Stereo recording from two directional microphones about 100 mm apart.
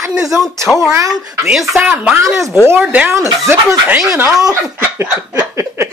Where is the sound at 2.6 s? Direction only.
20° right (ahead or behind).